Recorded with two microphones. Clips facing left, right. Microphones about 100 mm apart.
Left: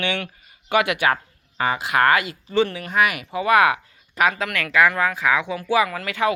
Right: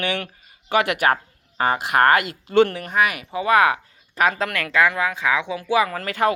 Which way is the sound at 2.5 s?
65° right (ahead or behind).